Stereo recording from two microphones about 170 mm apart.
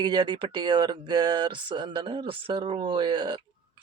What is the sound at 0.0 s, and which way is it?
Speech, 25° right (ahead or behind).